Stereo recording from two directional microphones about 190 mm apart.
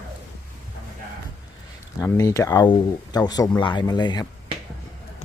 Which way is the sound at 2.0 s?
15° left (ahead or behind).